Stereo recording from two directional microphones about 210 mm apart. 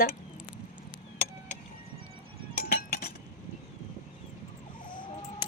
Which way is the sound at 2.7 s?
45° left (ahead or behind).